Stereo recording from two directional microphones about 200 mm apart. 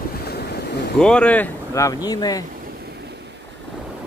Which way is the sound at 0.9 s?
5° left (ahead or behind).